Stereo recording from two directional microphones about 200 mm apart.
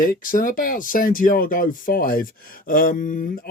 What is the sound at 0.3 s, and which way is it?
Speech, 45° left (ahead or behind).